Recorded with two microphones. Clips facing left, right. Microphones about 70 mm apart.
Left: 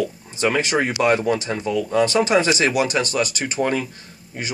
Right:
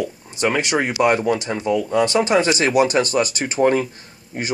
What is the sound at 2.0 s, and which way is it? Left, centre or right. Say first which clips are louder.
Speech: even; right.